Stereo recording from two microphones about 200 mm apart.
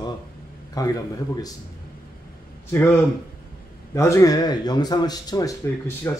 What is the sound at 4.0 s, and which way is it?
Speech, 15° left (ahead or behind).